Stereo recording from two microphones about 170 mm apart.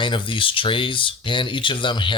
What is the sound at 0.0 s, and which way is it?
Speech, 30° left (ahead or behind).